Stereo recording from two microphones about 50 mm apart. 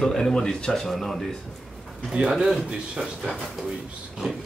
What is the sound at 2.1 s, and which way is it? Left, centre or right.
Speech, centre.